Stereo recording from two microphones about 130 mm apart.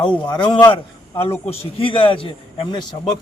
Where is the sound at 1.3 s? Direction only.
20° left (ahead or behind).